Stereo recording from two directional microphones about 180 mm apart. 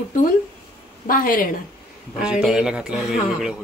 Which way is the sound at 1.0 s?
50° left (ahead or behind).